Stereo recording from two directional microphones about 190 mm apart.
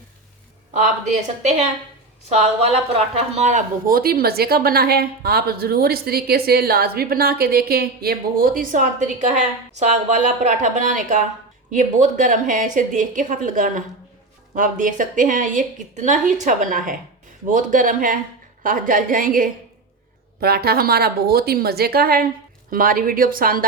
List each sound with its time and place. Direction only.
0.7 s a woman's voice: 40° right (ahead or behind)